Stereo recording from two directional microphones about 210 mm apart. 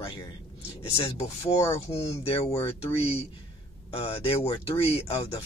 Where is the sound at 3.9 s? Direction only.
25° left (ahead or behind).